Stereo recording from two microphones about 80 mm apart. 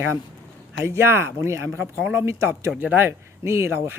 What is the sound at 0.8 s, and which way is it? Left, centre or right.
Speech, right.